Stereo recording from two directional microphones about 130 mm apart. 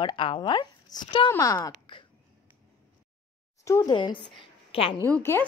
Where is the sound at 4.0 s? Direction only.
35° left (ahead or behind).